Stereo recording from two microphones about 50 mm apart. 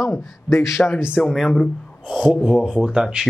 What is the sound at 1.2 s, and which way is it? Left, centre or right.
Speech, centre.